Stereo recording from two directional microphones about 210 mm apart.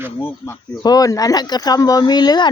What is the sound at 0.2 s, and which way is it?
Speech, 10° left (ahead or behind).